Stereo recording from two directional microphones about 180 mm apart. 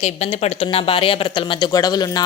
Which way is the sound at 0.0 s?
35° left (ahead or behind).